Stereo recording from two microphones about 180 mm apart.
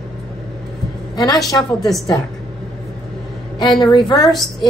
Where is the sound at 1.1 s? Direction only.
25° left (ahead or behind).